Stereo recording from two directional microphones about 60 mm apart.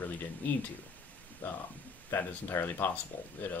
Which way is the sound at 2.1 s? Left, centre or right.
Left.